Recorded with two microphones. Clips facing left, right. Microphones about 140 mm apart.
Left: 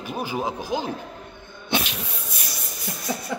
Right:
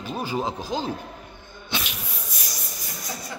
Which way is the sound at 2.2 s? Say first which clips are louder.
Left 1 dB; 60° left (ahead or behind).